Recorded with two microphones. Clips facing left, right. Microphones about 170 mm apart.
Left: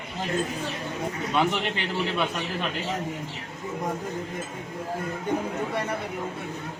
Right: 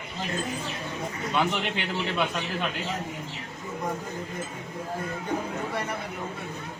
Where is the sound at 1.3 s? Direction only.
Centre (ahead or behind).